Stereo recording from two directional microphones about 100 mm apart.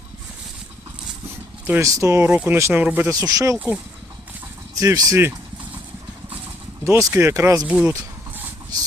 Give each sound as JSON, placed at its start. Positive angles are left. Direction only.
{"t": 1.8, "sound": "speech", "side_deg": -30}
{"t": 2.3, "sound": "speech", "side_deg": -20}
{"t": 3.1, "sound": "speech", "side_deg": -35}
{"t": 4.8, "sound": "speech", "side_deg": -35}
{"t": 6.8, "sound": "speech", "side_deg": -30}
{"t": 7.7, "sound": "speech", "side_deg": -10}